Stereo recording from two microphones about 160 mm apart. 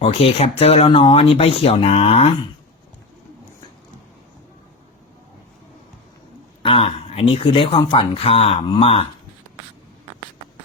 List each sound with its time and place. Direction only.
0.0 s speech: 35° left (ahead or behind)
6.6 s speech: 35° left (ahead or behind)